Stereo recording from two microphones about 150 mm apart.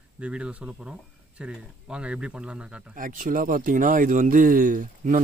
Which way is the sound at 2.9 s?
65° right (ahead or behind).